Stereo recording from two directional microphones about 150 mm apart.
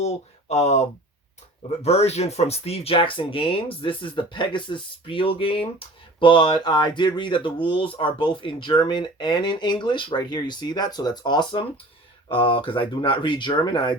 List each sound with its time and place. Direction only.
0.0 s speech: 45° left (ahead or behind)
1.8 s speech: 45° left (ahead or behind)